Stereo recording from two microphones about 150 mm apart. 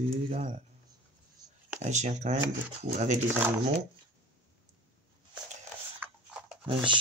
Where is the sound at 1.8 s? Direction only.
50° right (ahead or behind).